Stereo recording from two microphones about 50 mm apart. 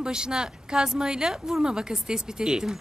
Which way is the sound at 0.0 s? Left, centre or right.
Centre.